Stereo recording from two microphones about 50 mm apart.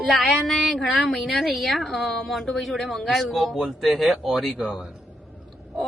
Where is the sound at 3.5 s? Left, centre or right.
Centre.